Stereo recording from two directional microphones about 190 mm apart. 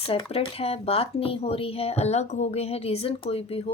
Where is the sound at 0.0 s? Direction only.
30° left (ahead or behind).